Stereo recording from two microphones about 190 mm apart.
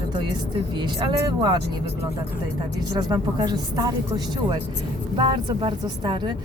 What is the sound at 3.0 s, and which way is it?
Speech, 20° right (ahead or behind).